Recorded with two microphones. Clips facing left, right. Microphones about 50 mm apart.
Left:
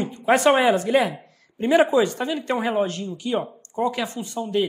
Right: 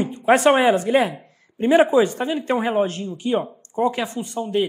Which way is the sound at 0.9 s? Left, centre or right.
Centre.